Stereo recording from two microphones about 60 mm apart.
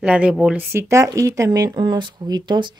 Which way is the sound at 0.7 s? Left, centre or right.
Right.